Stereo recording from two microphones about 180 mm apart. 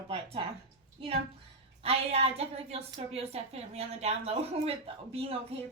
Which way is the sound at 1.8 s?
35° right (ahead or behind).